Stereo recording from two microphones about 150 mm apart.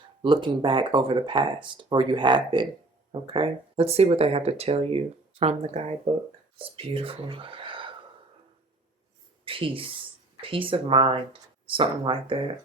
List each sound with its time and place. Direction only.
0.2 s speech: 30° right (ahead or behind)
9.4 s a sound: 35° right (ahead or behind)
10.5 s speech: 35° right (ahead or behind)